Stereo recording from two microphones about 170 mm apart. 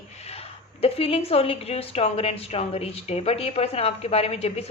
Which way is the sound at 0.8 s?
35° left (ahead or behind).